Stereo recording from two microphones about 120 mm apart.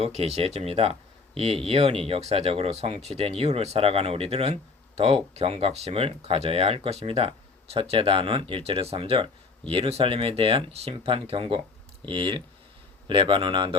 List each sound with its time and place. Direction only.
0.0 s speech: 55° right (ahead or behind)